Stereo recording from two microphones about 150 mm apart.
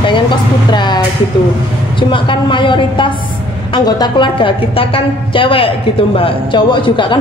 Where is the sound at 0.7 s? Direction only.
30° left (ahead or behind).